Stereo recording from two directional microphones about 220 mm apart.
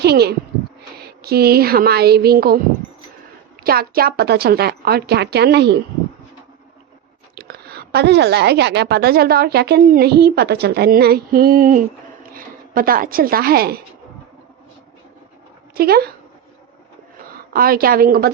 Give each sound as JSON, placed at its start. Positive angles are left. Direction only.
{"t": 0.0, "sound": "speech", "side_deg": -45}
{"t": 3.6, "sound": "a woman's voice", "side_deg": -45}
{"t": 7.3, "sound": "a woman's voice", "side_deg": -45}
{"t": 15.7, "sound": "speech", "side_deg": -45}
{"t": 17.5, "sound": "a woman's voice", "side_deg": -40}